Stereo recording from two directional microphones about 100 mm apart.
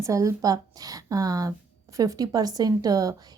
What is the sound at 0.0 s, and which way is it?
A woman's voice, 30° right (ahead or behind).